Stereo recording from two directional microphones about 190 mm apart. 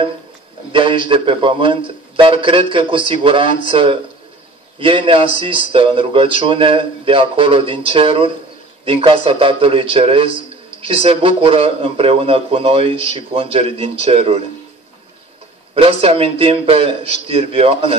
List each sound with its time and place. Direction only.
0.7 s a man's voice: 25° right (ahead or behind)
15.7 s speech: 30° right (ahead or behind)